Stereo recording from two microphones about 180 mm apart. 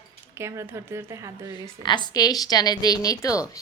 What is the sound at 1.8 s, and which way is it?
A woman's voice, 25° left (ahead or behind).